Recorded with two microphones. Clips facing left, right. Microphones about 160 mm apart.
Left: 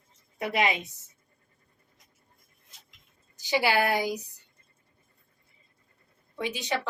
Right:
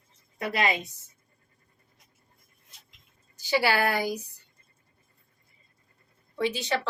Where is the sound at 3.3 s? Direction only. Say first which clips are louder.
Even; 20° left (ahead or behind).